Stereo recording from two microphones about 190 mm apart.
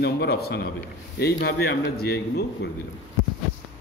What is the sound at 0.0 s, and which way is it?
A man's voice, 60° left (ahead or behind).